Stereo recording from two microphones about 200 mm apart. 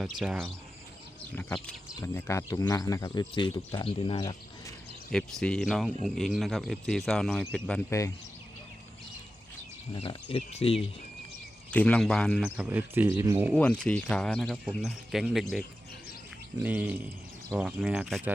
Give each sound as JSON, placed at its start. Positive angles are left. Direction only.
{"t": 0.0, "sound": "speech", "side_deg": -5}
{"t": 1.4, "sound": "speech", "side_deg": 10}
{"t": 5.1, "sound": "speech", "side_deg": 5}
{"t": 9.9, "sound": "speech", "side_deg": 25}
{"t": 11.7, "sound": "speech", "side_deg": 5}
{"t": 12.5, "sound": "speech", "side_deg": -10}
{"t": 13.5, "sound": "speech", "side_deg": 5}